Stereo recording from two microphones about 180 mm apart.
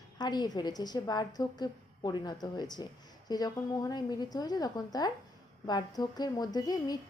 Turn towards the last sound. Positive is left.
turn(degrees=20)  # may be behind; listen again after turning